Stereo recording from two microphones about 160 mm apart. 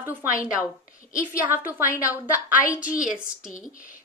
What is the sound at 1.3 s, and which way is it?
A woman's voice, 10° right (ahead or behind).